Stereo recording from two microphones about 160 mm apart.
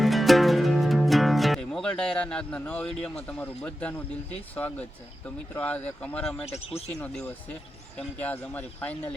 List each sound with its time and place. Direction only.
0.0 s music: centre (ahead or behind)
5.5 s speech: 10° left (ahead or behind)
6.5 s speech: 40° left (ahead or behind)
7.0 s speech: 10° left (ahead or behind)